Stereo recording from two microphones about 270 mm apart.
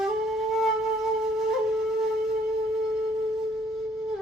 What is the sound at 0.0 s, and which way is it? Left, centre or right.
Flute, centre.